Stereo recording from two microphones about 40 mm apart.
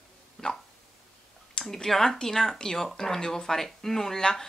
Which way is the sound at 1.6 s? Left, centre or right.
Centre.